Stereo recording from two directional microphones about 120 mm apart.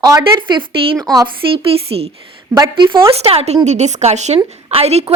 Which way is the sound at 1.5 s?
50° right (ahead or behind).